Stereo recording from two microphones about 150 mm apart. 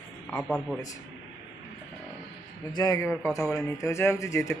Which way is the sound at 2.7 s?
25° left (ahead or behind).